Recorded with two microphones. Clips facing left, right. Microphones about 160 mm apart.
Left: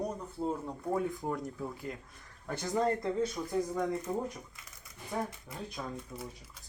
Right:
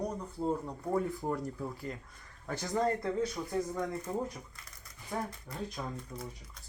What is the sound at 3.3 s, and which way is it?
Speech, 5° left (ahead or behind).